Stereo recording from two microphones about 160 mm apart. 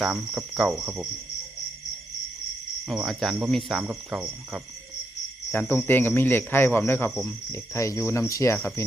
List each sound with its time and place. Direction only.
0.0 s speech: 5° right (ahead or behind)
0.7 s speech: 15° right (ahead or behind)
2.8 s speech: 5° right (ahead or behind)
5.5 s speech: 10° left (ahead or behind)